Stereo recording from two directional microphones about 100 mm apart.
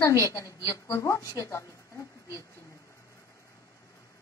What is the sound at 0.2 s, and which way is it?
A woman's voice, 35° left (ahead or behind).